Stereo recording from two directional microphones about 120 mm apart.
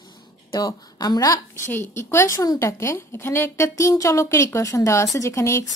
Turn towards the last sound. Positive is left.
turn(degrees=25)  # may be behind; listen again after turning